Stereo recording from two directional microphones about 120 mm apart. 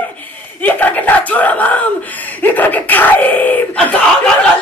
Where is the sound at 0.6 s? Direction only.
15° left (ahead or behind).